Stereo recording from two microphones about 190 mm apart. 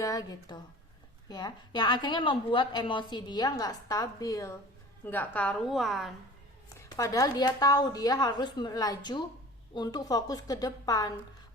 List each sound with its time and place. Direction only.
0.0 s a woman's voice: 20° left (ahead or behind); by 6.1 s centre (ahead or behind)
6.7 s a woman's voice: 15° left (ahead or behind)